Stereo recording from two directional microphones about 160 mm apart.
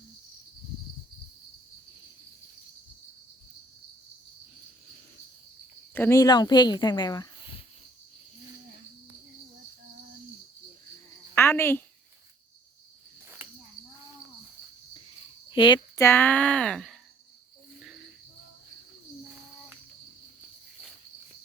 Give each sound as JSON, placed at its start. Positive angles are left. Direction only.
{"t": 5.9, "sound": "a woman's voice", "side_deg": 15}
{"t": 11.3, "sound": "a sound", "side_deg": 15}
{"t": 15.4, "sound": "cricket", "side_deg": 30}
{"t": 16.0, "sound": "speech", "side_deg": 15}